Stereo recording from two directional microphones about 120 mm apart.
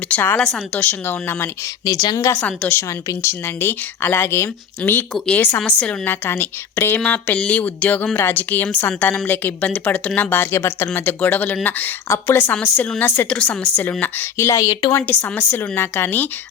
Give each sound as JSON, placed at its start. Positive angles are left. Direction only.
{"t": 0.1, "sound": "a woman's voice", "side_deg": 15}
{"t": 0.9, "sound": "speech", "side_deg": 15}
{"t": 1.8, "sound": "speech", "side_deg": 30}
{"t": 2.4, "sound": "speech", "side_deg": 10}
{"t": 2.7, "sound": "speech", "side_deg": 25}
{"t": 5.1, "sound": "speech", "side_deg": 5}
{"t": 5.4, "sound": "speech", "side_deg": 20}
{"t": 14.9, "sound": "speech", "side_deg": 20}